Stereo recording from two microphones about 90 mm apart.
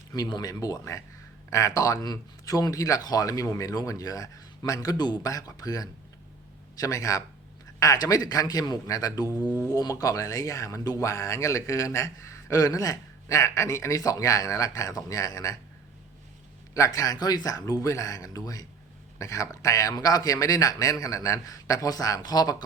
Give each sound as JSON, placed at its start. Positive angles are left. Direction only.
{"t": 0.1, "sound": "a man's voice", "side_deg": 50}
{"t": 16.7, "sound": "speech", "side_deg": 40}